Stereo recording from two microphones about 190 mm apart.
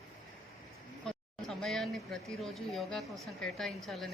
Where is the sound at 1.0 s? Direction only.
Centre (ahead or behind).